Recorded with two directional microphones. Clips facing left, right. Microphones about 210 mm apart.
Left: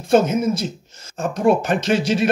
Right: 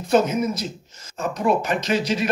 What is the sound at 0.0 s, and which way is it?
Speech, 30° left (ahead or behind).